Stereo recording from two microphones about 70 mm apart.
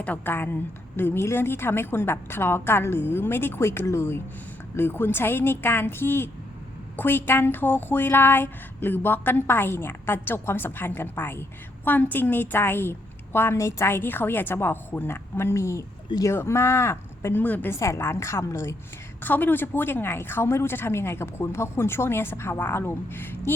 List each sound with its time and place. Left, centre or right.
0.0 s speech: left
17.4 s a woman's voice: left
17.7 s speech: left
19.2 s speech: left